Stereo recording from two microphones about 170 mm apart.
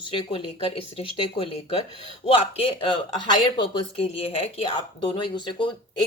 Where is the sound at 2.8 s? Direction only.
30° left (ahead or behind).